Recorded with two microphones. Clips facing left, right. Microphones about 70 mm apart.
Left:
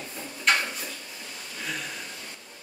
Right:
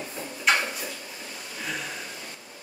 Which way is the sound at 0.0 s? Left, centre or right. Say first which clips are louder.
Right 1 dB; centre.